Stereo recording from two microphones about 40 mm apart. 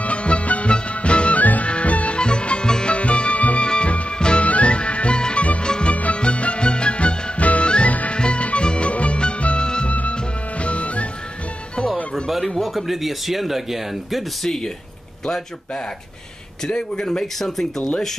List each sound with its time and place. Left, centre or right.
0.0 s music: left
1.4 s music: left
7.9 s music: left
8.2 s music: left
12.5 s speech: centre
14.4 s speech: centre